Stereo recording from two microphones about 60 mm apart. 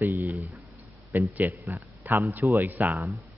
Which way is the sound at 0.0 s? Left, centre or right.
Right.